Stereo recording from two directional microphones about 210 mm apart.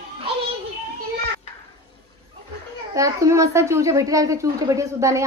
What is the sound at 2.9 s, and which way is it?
A woman's voice, 15° right (ahead or behind).